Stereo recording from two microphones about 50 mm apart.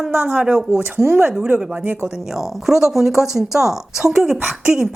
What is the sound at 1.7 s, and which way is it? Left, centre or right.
Speech, right.